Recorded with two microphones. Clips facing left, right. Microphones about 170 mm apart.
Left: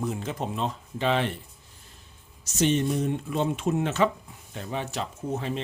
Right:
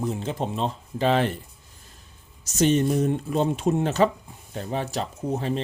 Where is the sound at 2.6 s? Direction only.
40° right (ahead or behind).